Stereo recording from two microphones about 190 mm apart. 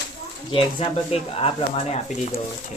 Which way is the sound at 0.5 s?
30° left (ahead or behind).